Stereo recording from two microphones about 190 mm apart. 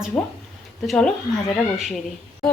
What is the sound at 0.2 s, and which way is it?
Speech, centre (ahead or behind).